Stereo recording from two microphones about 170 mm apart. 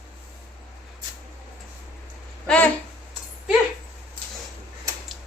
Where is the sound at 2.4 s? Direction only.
5° left (ahead or behind).